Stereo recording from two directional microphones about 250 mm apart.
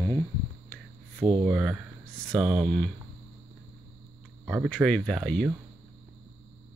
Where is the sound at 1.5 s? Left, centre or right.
Centre.